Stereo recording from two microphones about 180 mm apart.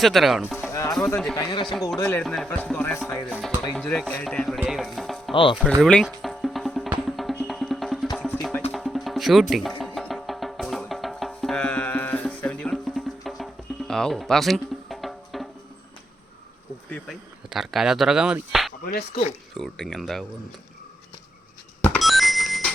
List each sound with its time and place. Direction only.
0.0 s speech: centre (ahead or behind)
0.7 s music: 15° left (ahead or behind)
0.9 s speech: 5° left (ahead or behind)
1.4 s speech: 20° left (ahead or behind)
2.0 s music: 15° left (ahead or behind)
3.6 s speech: 5° left (ahead or behind)
5.3 s speech: 30° left (ahead or behind)
5.8 s music: 5° left (ahead or behind)
16.9 s speech: centre (ahead or behind)
18.9 s speech: 55° left (ahead or behind)
19.5 s speech: centre (ahead or behind)
21.8 s bicycle bell: centre (ahead or behind)